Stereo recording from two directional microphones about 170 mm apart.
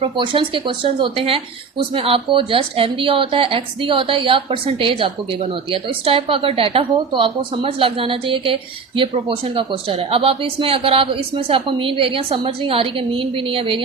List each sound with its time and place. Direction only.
0.0 s speech: 30° right (ahead or behind)